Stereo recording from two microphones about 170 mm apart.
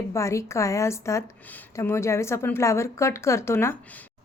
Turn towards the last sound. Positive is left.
turn(degrees=15)  # may be behind; listen again after turning